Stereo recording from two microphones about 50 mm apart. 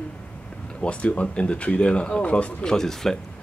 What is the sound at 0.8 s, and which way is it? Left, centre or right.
Speech, left.